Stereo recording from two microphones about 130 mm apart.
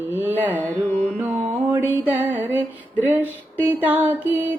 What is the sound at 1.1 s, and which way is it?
Music, 10° right (ahead or behind).